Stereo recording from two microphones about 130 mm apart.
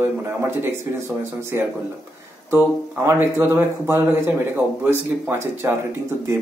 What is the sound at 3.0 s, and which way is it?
A man's voice, 20° right (ahead or behind).